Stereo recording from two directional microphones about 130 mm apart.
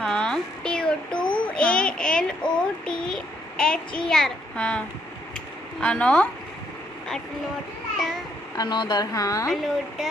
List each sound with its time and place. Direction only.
0.0 s a sound: 5° left (ahead or behind)
1.3 s child singing: 5° left (ahead or behind)
5.8 s a woman's voice: 10° left (ahead or behind)
8.5 s a woman's voice: 35° left (ahead or behind)